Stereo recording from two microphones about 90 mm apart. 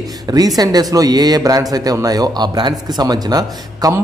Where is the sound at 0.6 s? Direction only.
45° right (ahead or behind).